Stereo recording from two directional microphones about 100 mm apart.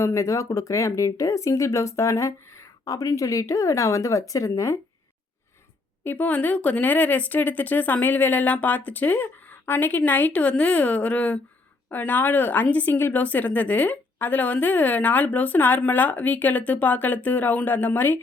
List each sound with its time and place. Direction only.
0.0 s speech: 30° left (ahead or behind)
6.1 s a woman's voice: 15° left (ahead or behind)